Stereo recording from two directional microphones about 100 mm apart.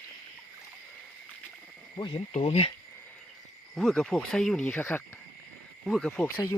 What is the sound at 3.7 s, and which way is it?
Speech, centre (ahead or behind).